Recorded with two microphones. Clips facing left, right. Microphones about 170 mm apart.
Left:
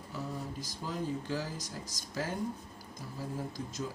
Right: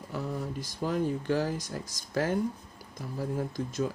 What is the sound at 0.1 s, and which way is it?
Speech, 60° right (ahead or behind).